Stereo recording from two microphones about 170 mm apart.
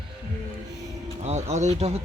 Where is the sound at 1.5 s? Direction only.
40° right (ahead or behind).